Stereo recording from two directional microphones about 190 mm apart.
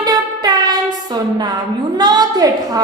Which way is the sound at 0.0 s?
20° right (ahead or behind).